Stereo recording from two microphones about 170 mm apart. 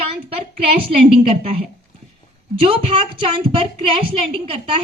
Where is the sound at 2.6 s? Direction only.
30° right (ahead or behind).